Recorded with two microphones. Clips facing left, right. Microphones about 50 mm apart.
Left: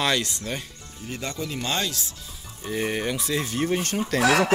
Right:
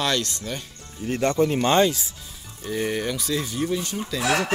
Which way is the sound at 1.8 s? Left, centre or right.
Centre.